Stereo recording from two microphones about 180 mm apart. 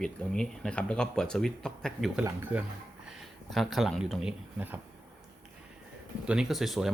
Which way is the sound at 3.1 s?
Centre (ahead or behind).